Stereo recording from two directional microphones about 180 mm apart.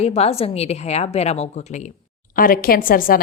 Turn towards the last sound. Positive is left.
turn(degrees=50)  # may be behind; listen again after turning